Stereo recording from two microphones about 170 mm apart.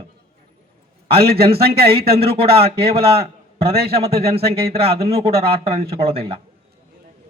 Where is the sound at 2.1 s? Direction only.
35° right (ahead or behind).